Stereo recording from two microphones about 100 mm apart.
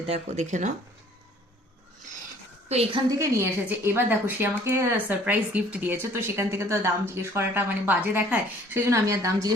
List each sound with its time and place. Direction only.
2.6 s a woman's voice: 90° right
3.1 s a woman's voice: 30° right (ahead or behind)